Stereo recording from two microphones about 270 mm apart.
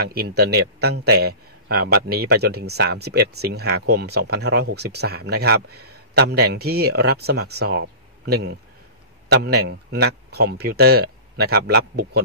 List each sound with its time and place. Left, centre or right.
0.0 s speech: right